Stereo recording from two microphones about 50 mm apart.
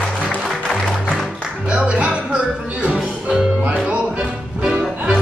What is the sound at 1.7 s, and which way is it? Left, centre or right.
Music, right.